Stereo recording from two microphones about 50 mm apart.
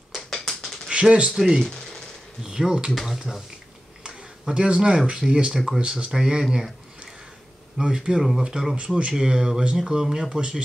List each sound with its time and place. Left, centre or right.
0.1 s a sound: centre
0.8 s speech: centre
1.6 s a sound: centre
2.4 s speech: centre
4.5 s speech: centre
7.8 s speech: centre